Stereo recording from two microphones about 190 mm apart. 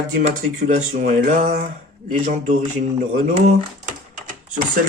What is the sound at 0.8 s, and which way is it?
Speech, 40° right (ahead or behind).